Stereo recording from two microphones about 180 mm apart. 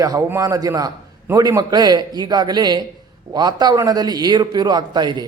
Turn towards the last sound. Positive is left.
turn(degrees=-25)  # may be behind; listen again after turning